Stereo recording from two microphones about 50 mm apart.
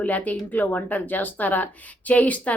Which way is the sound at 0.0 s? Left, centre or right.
Left.